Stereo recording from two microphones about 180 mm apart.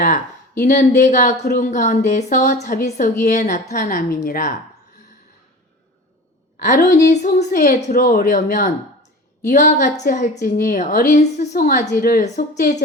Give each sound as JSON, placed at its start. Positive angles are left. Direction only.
{"t": 0.6, "sound": "a woman's voice", "side_deg": 40}
{"t": 4.2, "sound": "speech", "side_deg": 55}
{"t": 6.6, "sound": "a woman's voice", "side_deg": 45}